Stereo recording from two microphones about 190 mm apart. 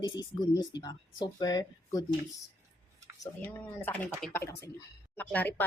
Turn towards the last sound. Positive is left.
turn(degrees=10)  # may be behind; listen again after turning